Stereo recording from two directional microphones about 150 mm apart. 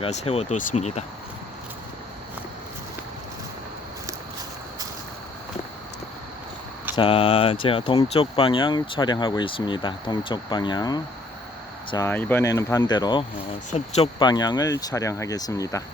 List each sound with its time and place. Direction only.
0.0 s speech: 45° left (ahead or behind)
6.9 s speech: 35° left (ahead or behind)
12.0 s speech: 15° left (ahead or behind)
13.7 s speech: 45° left (ahead or behind)
14.2 s speech: 30° left (ahead or behind)